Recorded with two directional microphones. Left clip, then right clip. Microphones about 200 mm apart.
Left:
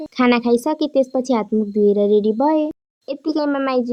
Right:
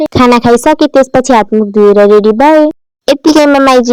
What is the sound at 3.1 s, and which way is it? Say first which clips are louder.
Speech: right 16 dB; 50° right (ahead or behind).